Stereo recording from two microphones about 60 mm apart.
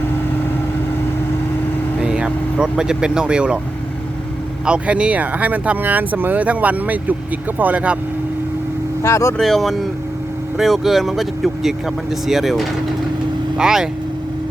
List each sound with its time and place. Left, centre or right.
2.0 s speech: centre
4.6 s speech: centre
9.0 s speech: left
9.4 s speech: centre